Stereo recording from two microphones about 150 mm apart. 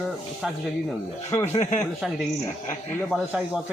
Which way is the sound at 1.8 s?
Centre (ahead or behind).